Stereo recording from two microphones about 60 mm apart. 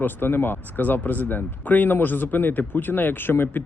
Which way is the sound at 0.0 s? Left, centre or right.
Left.